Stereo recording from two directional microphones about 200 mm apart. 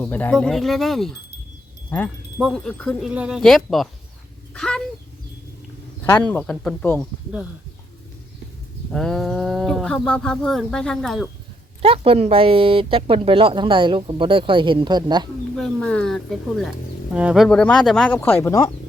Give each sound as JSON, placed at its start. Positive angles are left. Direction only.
{"t": 0.0, "sound": "speech", "side_deg": 5}
{"t": 6.1, "sound": "speech", "side_deg": 10}
{"t": 8.9, "sound": "speech", "side_deg": 0}
{"t": 11.8, "sound": "speech", "side_deg": -30}
{"t": 15.5, "sound": "speech", "side_deg": 5}